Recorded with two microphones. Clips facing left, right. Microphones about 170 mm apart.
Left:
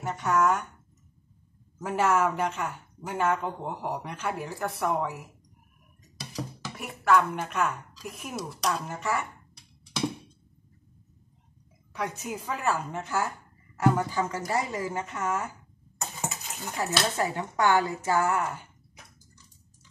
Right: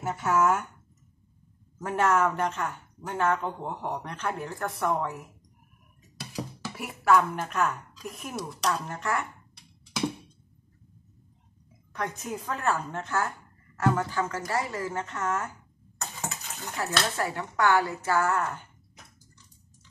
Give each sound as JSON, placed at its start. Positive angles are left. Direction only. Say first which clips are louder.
{"t": 0.0, "sound": "speech", "louder": "even", "side_deg": -5}
{"t": 1.8, "sound": "speech", "louder": "even", "side_deg": 5}
{"t": 6.7, "sound": "a woman's voice", "louder": "right 1 dB", "side_deg": -5}
{"t": 11.9, "sound": "speech", "louder": "even", "side_deg": 5}